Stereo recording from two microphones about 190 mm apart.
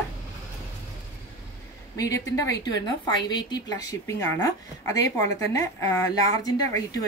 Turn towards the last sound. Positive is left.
turn(degrees=20)  # may be behind; listen again after turning